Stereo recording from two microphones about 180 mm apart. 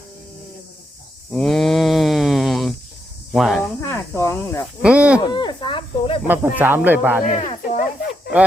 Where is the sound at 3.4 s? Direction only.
Centre (ahead or behind).